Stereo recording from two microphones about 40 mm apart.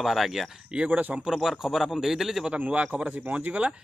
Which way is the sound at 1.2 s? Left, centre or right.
Centre.